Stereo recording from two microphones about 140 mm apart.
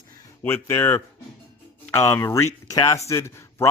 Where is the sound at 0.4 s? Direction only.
20° left (ahead or behind).